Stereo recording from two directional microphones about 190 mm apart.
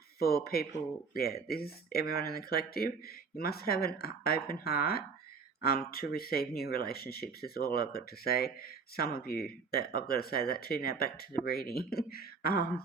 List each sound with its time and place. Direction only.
0.2 s speech: 55° left (ahead or behind)